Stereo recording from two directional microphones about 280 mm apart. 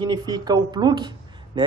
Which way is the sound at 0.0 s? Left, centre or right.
Centre.